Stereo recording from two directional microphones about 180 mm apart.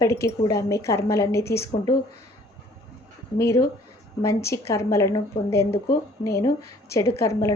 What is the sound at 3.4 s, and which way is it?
Speech, 15° left (ahead or behind).